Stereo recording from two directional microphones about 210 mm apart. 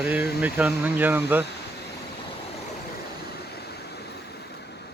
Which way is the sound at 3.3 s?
50° left (ahead or behind).